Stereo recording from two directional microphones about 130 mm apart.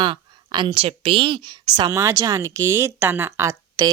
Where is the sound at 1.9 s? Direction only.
20° right (ahead or behind).